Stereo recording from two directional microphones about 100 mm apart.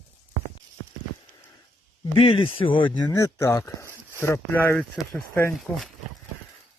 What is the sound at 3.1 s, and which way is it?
Speech, 35° left (ahead or behind).